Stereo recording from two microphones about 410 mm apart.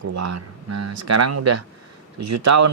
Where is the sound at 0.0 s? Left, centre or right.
Right.